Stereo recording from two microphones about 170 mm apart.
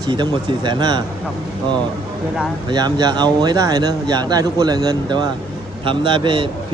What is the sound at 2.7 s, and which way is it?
Speech, 25° right (ahead or behind).